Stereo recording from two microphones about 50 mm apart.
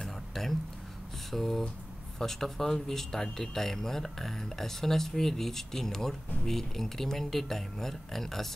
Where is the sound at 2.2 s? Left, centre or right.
Centre.